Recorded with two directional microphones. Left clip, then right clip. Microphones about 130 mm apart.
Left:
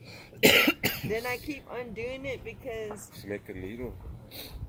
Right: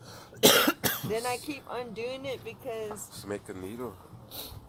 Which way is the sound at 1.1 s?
Centre (ahead or behind).